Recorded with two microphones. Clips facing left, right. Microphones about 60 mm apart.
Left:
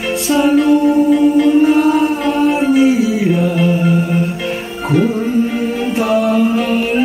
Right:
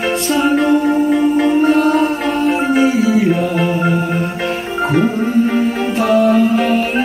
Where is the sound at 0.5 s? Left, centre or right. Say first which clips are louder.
Left 3 dB; right.